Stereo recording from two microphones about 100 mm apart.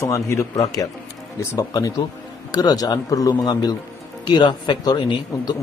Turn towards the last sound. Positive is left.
turn(degrees=45)  # may be behind; listen again after turning